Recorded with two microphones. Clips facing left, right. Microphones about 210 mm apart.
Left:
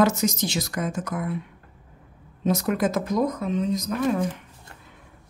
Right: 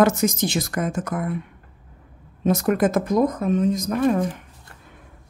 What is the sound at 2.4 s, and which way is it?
Speech, 50° right (ahead or behind).